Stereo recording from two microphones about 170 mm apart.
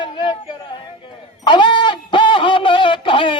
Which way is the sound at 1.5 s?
25° left (ahead or behind).